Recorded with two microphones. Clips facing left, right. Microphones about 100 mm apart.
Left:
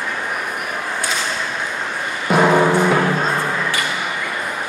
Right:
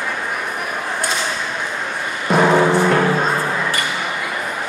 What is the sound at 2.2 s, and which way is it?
Music, 5° left (ahead or behind).